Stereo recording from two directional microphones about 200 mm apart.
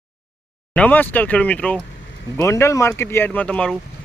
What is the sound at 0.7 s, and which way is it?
Speech, 10° left (ahead or behind).